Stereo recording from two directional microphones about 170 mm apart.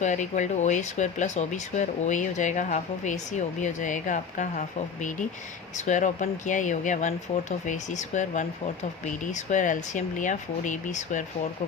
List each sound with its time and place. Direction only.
0.0 s speech: 45° left (ahead or behind)